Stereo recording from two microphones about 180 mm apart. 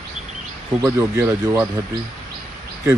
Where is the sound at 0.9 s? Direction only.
15° right (ahead or behind).